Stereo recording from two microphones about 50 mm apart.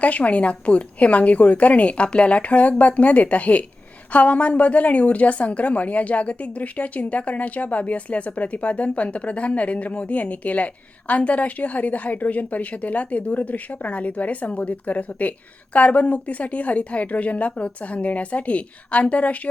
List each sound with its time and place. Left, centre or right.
0.0 s a woman's voice: left